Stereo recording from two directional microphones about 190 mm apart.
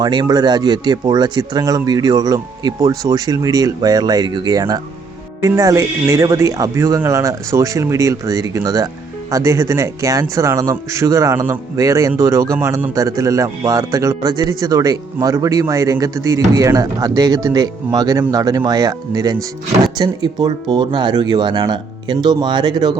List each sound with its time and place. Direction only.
0.0 s speech: 20° right (ahead or behind)